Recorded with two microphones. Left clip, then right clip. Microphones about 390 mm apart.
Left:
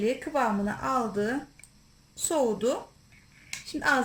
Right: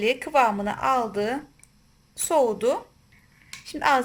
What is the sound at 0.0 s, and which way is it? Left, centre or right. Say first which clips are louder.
A woman's voice: right 6 dB; right.